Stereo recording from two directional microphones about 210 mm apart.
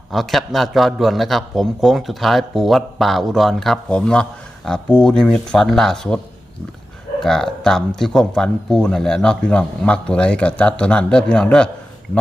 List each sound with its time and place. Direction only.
0.1 s a man's voice: centre (ahead or behind)
7.2 s a man's voice: centre (ahead or behind)